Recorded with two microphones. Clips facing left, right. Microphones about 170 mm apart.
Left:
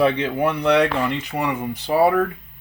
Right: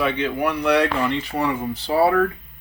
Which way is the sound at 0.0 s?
30° left (ahead or behind).